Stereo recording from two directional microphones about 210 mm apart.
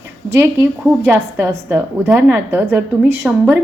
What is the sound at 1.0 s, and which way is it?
A woman's voice, 10° right (ahead or behind).